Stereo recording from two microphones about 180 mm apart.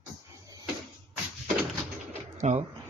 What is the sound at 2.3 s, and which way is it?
Pigeon, 40° right (ahead or behind).